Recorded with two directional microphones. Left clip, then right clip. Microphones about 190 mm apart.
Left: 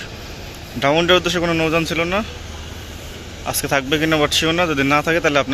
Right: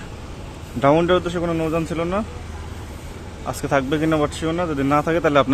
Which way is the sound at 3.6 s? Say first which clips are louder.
Left 2 dB; 5° right (ahead or behind).